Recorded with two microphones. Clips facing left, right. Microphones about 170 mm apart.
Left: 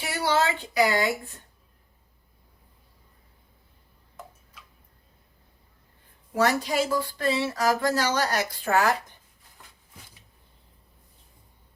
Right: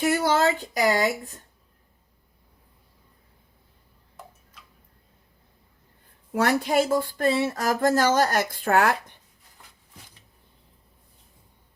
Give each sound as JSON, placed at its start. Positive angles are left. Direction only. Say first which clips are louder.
{"t": 0.0, "sound": "speech", "louder": "right 4 dB", "side_deg": -45}
{"t": 6.3, "sound": "speech", "louder": "right 2 dB", "side_deg": -55}